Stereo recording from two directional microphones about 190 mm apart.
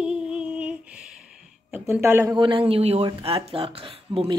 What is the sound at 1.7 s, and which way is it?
Speech, 10° right (ahead or behind).